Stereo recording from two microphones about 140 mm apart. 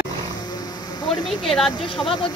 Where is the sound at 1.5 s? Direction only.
Centre (ahead or behind).